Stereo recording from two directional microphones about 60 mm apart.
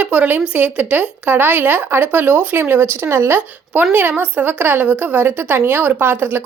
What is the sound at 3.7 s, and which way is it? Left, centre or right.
A woman's voice, right.